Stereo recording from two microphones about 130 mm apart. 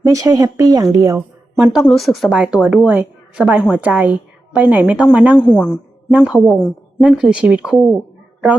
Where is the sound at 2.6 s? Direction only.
10° right (ahead or behind).